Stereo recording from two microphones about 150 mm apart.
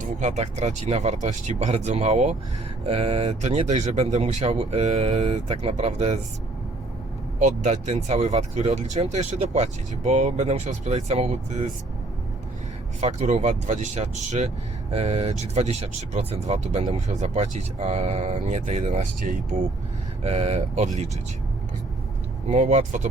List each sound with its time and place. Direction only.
0.0 s speech: 50° right (ahead or behind)
7.3 s speech: 55° right (ahead or behind)
13.0 s speech: 50° right (ahead or behind)
20.2 s speech: 45° right (ahead or behind)
22.4 s speech: 55° right (ahead or behind)